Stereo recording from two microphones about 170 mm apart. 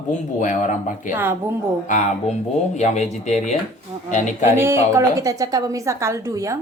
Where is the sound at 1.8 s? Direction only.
50° left (ahead or behind).